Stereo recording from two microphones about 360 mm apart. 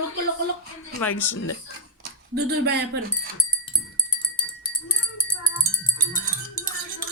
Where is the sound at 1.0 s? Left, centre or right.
Centre.